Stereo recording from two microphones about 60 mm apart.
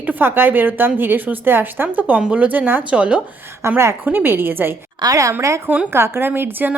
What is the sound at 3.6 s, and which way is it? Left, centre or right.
Speech, right.